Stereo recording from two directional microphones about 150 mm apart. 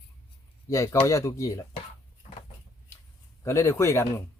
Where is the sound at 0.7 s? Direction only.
20° left (ahead or behind).